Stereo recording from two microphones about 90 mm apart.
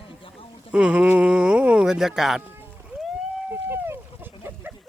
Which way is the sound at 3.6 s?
25° right (ahead or behind).